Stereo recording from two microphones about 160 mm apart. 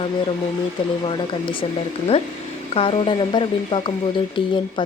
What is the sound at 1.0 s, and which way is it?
Speech, 30° left (ahead or behind).